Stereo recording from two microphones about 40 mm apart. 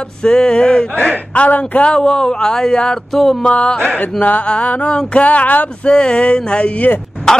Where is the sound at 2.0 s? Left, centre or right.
Centre.